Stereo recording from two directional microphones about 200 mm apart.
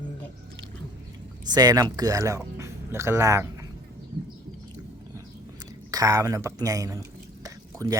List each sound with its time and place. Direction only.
1.5 s speech: 20° right (ahead or behind)
5.9 s speech: 20° right (ahead or behind)
7.4 s drip: 20° right (ahead or behind)